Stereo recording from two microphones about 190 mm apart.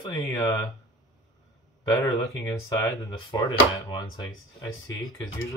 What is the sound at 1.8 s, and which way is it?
Speech, 15° left (ahead or behind).